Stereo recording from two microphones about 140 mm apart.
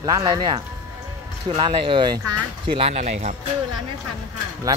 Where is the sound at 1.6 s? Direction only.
40° right (ahead or behind).